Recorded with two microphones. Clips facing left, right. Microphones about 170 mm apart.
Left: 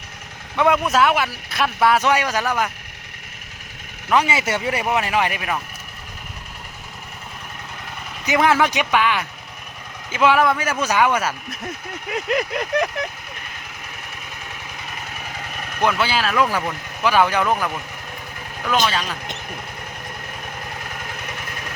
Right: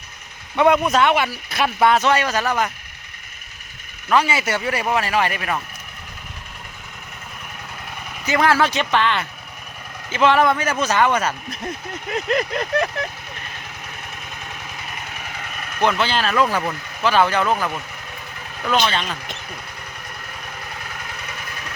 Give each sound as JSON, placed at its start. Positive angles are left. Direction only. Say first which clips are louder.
{"t": 0.5, "sound": "speech", "louder": "right 2 dB", "side_deg": 0}
{"t": 4.1, "sound": "speech", "louder": "even", "side_deg": 20}
{"t": 8.3, "sound": "speech", "louder": "even", "side_deg": 20}
{"t": 15.8, "sound": "speech", "louder": "right 1 dB", "side_deg": 5}
{"t": 18.9, "sound": "speech", "louder": "even", "side_deg": 5}